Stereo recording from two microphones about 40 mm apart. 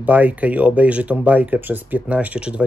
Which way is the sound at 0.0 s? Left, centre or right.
Right.